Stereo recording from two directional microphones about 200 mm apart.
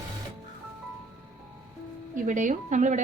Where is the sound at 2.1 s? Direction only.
40° right (ahead or behind).